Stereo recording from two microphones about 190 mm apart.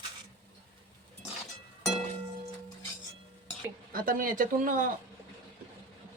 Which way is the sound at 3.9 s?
50° right (ahead or behind).